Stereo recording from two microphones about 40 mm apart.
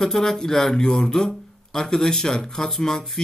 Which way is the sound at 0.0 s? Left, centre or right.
Centre.